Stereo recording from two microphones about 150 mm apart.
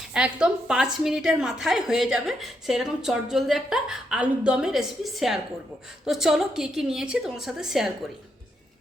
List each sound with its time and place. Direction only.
0.1 s a woman's voice: 5° right (ahead or behind)